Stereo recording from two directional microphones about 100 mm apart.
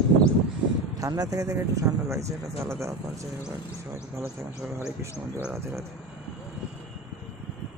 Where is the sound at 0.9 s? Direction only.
35° right (ahead or behind).